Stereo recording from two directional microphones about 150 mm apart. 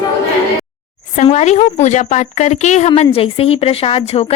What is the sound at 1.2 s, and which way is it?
A woman's voice, 50° left (ahead or behind).